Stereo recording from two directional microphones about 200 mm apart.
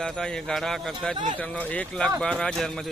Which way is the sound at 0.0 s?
5° left (ahead or behind).